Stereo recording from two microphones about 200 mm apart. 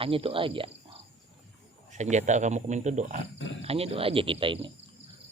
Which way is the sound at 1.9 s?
35° right (ahead or behind).